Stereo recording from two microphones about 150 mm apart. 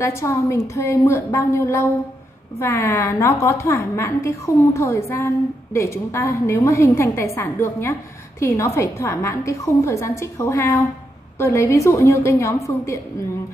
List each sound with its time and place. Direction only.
0.0 s a woman's voice: 20° left (ahead or behind)